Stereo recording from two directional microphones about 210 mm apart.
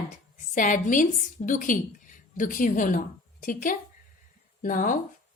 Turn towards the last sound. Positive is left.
turn(degrees=40)  # may be behind; listen again after turning